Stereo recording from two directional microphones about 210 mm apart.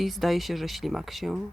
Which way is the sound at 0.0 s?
Centre (ahead or behind).